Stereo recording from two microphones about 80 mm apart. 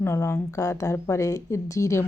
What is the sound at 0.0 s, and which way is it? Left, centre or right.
Speech, left.